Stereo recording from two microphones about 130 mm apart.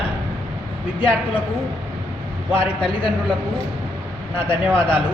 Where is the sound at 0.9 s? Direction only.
40° left (ahead or behind).